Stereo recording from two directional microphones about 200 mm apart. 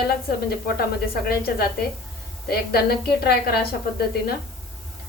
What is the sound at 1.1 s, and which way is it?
Speech, 50° left (ahead or behind).